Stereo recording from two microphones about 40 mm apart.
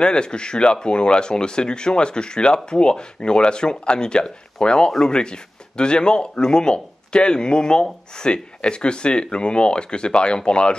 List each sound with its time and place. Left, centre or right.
0.0 s speech: left